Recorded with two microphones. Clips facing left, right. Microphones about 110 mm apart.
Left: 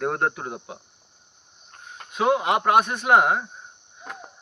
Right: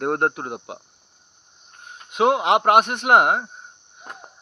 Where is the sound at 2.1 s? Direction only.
65° right (ahead or behind).